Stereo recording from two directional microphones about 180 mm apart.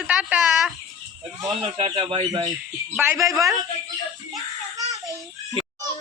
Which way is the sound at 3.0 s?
15° right (ahead or behind).